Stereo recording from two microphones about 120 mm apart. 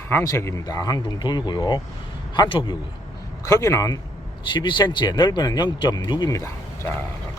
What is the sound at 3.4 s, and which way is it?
Speech, 25° left (ahead or behind).